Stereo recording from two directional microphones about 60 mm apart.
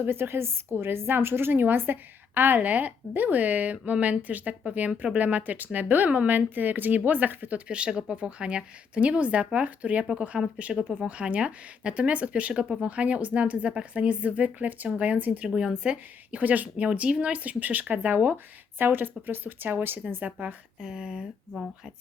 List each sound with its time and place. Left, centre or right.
0.0 s a woman's voice: right
7.7 s speech: centre
15.4 s a woman's voice: centre; by 20.6 s right
20.8 s speech: centre